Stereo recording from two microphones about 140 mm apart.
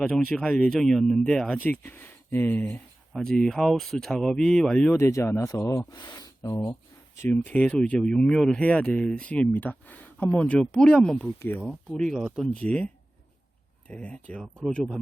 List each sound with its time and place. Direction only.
0.3 s speech: 5° left (ahead or behind)
4.9 s speech: 20° left (ahead or behind)
7.2 s speech: 10° left (ahead or behind)